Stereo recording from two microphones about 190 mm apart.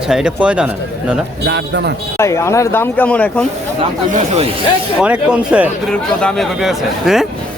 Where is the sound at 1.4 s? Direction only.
65° right (ahead or behind).